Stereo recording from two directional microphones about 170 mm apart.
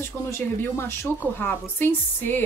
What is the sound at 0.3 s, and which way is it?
Speech, 15° left (ahead or behind).